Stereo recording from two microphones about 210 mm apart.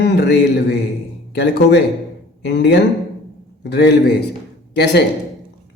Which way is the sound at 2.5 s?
55° left (ahead or behind).